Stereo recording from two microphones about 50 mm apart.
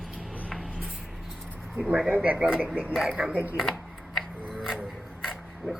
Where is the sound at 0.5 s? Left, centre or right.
Centre.